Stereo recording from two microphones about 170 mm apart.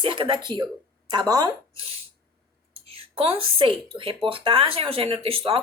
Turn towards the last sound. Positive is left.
turn(degrees=-30)  # may be behind; listen again after turning